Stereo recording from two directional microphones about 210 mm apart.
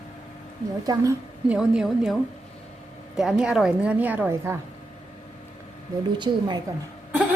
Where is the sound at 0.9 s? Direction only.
15° right (ahead or behind).